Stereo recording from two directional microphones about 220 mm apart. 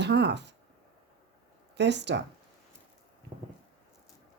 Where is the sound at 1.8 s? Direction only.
50° right (ahead or behind).